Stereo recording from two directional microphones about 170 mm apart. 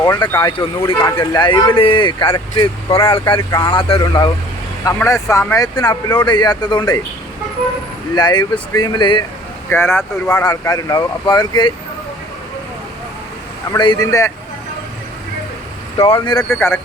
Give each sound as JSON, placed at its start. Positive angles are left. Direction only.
{"t": 0.4, "sound": "speech", "side_deg": 20}
{"t": 8.1, "sound": "speech", "side_deg": 25}
{"t": 9.6, "sound": "speech", "side_deg": 15}
{"t": 13.7, "sound": "speech", "side_deg": 25}
{"t": 16.0, "sound": "speech", "side_deg": 30}
{"t": 16.6, "sound": "speech", "side_deg": 15}